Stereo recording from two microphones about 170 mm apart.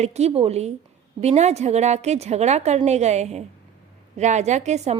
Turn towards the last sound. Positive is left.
turn(degrees=-40)  # may be behind; listen again after turning